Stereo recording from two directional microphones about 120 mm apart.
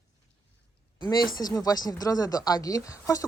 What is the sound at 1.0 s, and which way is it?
Speech, 35° left (ahead or behind).